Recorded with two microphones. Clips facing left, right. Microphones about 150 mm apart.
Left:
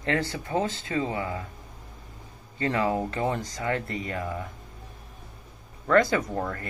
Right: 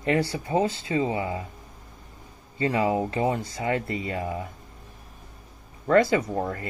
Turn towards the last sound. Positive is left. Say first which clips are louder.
# right 2 dB
turn(degrees=-15)  # may be behind; listen again after turning